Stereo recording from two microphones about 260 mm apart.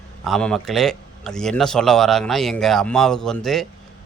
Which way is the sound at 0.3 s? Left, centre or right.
Centre.